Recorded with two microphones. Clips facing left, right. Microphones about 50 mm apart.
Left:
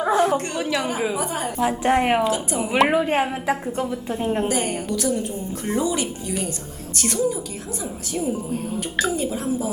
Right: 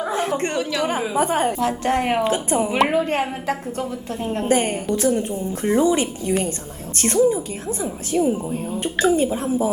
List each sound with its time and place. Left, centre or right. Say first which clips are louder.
0.3 s a woman's voice: right 3 dB; right
0.6 s a woman's voice: right 1 dB; centre
1.1 s a woman's voice: right 6 dB; right
1.5 s a woman's voice: left 1 dB; centre
2.2 s a woman's voice: right 2 dB; right
2.7 s a woman's voice: left 3 dB; centre
4.4 s a woman's voice: right 4 dB; right